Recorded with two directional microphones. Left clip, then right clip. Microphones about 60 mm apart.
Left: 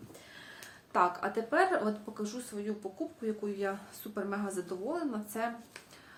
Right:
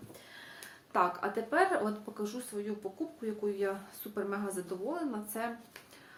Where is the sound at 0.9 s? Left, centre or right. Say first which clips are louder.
Left 1 dB; left.